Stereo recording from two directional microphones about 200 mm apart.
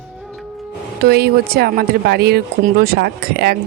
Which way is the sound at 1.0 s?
50° right (ahead or behind).